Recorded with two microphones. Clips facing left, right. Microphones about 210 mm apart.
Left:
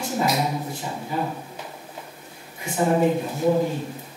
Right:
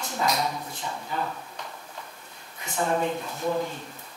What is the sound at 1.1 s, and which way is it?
Speech, 10° left (ahead or behind).